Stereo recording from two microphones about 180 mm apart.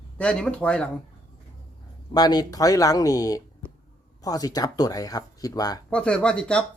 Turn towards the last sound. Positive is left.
turn(degrees=5)  # may be behind; listen again after turning